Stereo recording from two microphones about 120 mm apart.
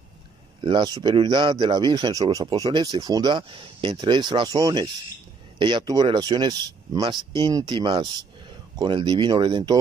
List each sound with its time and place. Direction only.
0.6 s speech: 40° right (ahead or behind)